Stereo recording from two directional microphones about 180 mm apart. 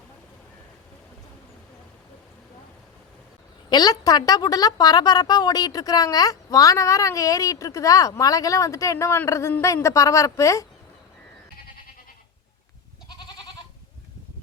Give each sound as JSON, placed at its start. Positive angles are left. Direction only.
{"t": 3.7, "sound": "a woman's voice", "side_deg": 20}
{"t": 13.1, "sound": "goat", "side_deg": 25}